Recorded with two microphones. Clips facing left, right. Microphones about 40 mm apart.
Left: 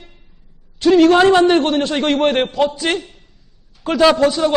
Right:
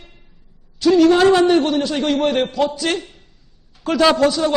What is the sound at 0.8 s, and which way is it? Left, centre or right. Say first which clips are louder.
A man's voice: left 2 dB; left.